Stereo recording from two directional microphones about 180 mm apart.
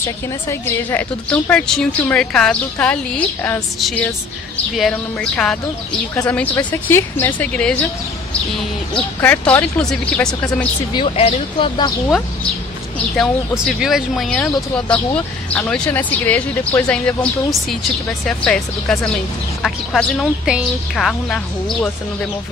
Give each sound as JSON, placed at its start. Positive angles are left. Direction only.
{"t": 0.5, "sound": "a woman's voice", "side_deg": 15}
{"t": 8.9, "sound": "speech", "side_deg": 5}
{"t": 10.9, "sound": "speech", "side_deg": 30}
{"t": 13.7, "sound": "a woman's voice", "side_deg": 0}